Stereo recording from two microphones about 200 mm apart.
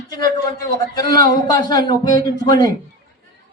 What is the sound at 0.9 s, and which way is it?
A man's voice, 20° left (ahead or behind).